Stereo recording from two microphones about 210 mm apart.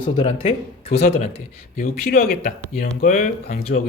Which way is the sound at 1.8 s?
45° left (ahead or behind).